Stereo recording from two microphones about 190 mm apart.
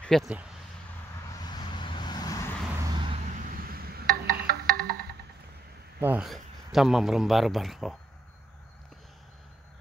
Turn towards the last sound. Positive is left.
turn(degrees=0)  # may be behind; listen again after turning